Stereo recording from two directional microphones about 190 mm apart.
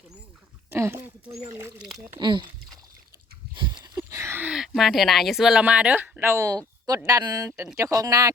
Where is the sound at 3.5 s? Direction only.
25° right (ahead or behind).